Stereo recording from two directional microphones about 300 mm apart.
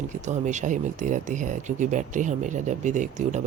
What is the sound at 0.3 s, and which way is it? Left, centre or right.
Speech, right.